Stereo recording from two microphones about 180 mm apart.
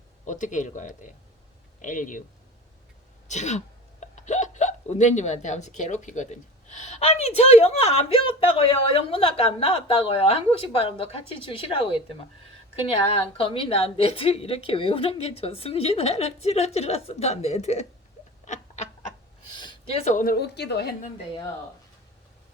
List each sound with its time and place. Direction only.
0.3 s speech: 45° left (ahead or behind)
3.2 s speech: 40° left (ahead or behind)
13.1 s speech: 30° left (ahead or behind)
18.4 s a sound: 40° left (ahead or behind)
19.5 s a woman's voice: 30° left (ahead or behind); by 20.9 s 65° left (ahead or behind)